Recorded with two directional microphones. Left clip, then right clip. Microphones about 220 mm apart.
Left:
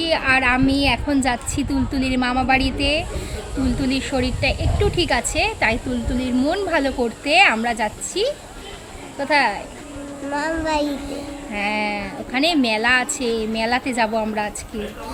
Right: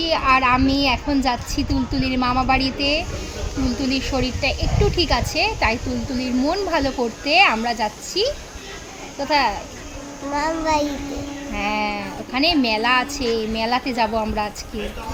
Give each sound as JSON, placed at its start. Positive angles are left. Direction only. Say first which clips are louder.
{"t": 0.0, "sound": "a woman's voice", "louder": "right 1 dB", "side_deg": -5}
{"t": 10.3, "sound": "a woman's voice", "louder": "right 1 dB", "side_deg": 5}
{"t": 11.5, "sound": "a woman's voice", "louder": "left 1 dB", "side_deg": -5}